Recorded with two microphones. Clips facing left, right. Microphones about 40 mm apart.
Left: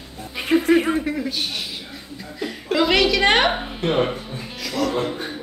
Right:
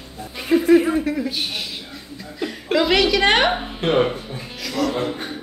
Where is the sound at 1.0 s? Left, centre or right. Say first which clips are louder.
Right 2 dB; centre.